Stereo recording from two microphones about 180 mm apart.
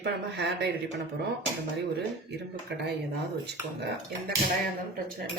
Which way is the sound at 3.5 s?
65° right (ahead or behind).